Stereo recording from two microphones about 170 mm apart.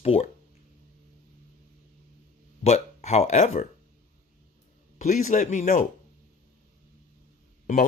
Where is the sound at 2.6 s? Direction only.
40° left (ahead or behind).